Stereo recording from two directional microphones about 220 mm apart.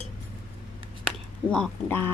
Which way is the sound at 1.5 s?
5° left (ahead or behind).